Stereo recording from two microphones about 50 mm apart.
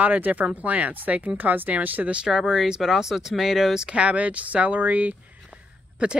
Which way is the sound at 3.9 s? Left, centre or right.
Right.